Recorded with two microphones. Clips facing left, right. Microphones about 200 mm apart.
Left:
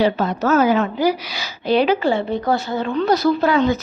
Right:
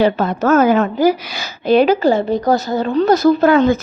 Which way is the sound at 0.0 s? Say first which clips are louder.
Right 3 dB; 55° right (ahead or behind).